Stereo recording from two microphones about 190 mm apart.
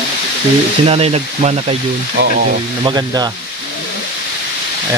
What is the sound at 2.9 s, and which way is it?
Speech, 20° right (ahead or behind).